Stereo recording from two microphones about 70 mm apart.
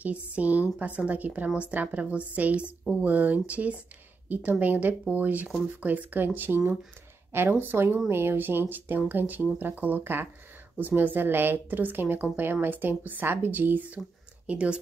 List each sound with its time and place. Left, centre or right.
0.0 s a woman's voice: right